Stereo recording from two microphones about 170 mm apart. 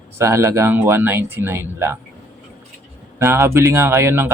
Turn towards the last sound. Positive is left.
turn(degrees=-15)  # may be behind; listen again after turning